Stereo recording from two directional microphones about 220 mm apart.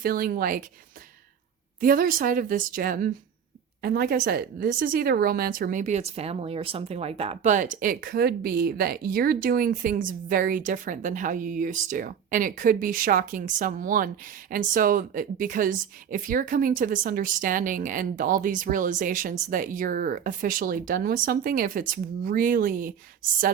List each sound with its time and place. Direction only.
0.0 s a woman's voice: 40° right (ahead or behind)
1.8 s a woman's voice: 40° right (ahead or behind)